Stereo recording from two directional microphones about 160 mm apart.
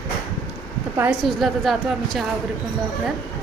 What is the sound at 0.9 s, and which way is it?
Speech, 10° right (ahead or behind).